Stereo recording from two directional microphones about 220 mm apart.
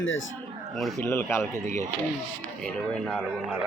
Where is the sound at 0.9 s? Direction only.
10° left (ahead or behind).